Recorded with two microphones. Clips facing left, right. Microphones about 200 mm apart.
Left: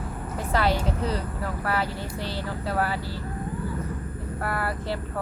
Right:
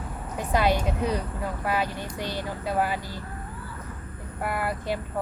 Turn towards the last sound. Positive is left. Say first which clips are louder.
# even
turn(degrees=-15)  # may be behind; listen again after turning